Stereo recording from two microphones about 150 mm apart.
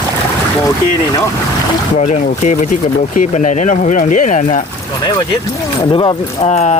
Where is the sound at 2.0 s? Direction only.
55° left (ahead or behind).